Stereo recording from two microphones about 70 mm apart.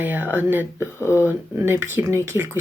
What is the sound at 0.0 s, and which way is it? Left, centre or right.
Speech, right.